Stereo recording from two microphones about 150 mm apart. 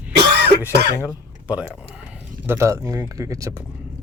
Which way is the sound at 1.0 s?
10° right (ahead or behind).